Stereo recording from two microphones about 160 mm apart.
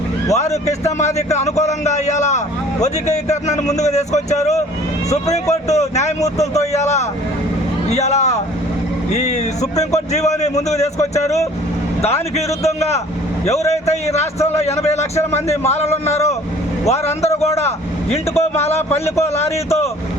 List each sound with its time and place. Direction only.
0.3 s a man's voice: 45° left (ahead or behind)
12.6 s a man's voice: 40° left (ahead or behind)